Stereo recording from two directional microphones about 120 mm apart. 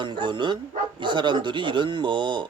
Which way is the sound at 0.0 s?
40° right (ahead or behind).